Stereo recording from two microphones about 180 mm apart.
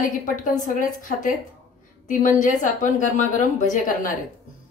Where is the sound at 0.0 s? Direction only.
45° left (ahead or behind).